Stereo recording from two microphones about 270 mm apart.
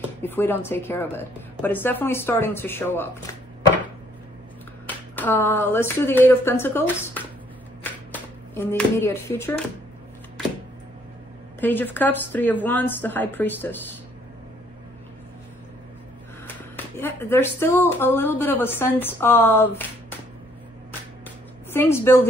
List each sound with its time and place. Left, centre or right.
0.2 s speech: centre
4.8 s speech: centre
7.8 s a sound: centre
11.6 s speech: centre
16.7 s speech: centre
21.7 s speech: centre